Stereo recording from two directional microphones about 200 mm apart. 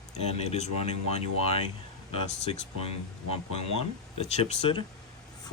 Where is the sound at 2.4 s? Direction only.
30° left (ahead or behind).